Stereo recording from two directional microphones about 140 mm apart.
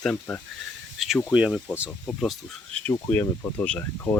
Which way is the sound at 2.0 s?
5° left (ahead or behind).